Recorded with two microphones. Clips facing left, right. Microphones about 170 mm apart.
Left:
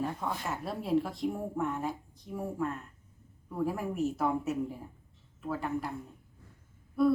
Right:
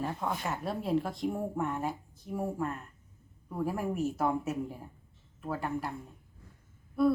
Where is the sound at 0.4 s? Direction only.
Centre (ahead or behind).